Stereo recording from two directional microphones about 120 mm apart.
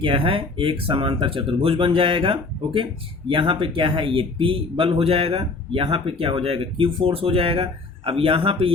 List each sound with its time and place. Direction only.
0.0 s speech: 50° right (ahead or behind)